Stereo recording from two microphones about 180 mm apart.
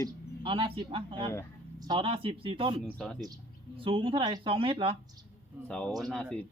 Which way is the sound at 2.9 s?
5° left (ahead or behind).